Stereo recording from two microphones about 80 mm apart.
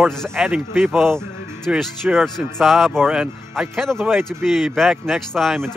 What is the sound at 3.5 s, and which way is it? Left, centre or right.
Speech, centre.